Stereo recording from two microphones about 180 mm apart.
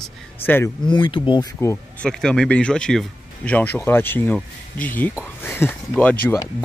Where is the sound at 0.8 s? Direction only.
25° left (ahead or behind).